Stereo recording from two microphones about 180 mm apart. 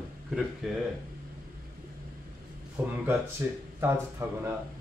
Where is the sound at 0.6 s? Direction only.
Centre (ahead or behind).